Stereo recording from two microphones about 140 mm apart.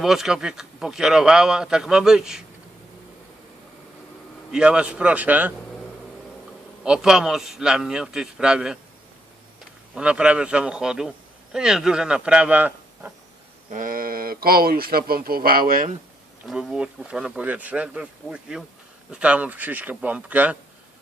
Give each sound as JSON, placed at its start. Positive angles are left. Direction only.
{"t": 0.0, "sound": "speech", "side_deg": -5}
{"t": 4.5, "sound": "speech", "side_deg": -5}
{"t": 6.8, "sound": "speech", "side_deg": -5}
{"t": 9.9, "sound": "speech", "side_deg": -5}
{"t": 13.7, "sound": "speech", "side_deg": -70}
{"t": 16.5, "sound": "speech", "side_deg": -5}